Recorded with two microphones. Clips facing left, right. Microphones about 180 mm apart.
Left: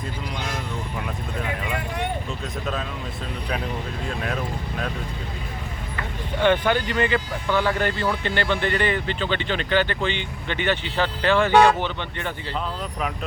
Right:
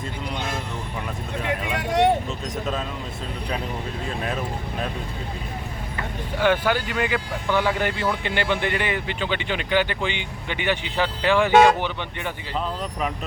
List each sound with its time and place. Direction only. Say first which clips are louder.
1.7 s vehicle: right 12 dB; 85° right
6.4 s speech: left 1 dB; 5° right (ahead or behind)